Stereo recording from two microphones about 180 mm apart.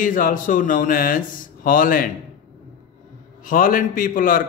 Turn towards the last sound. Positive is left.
turn(degrees=50)  # may be behind; listen again after turning